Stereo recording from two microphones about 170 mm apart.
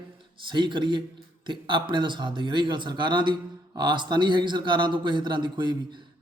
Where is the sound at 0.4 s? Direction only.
25° right (ahead or behind).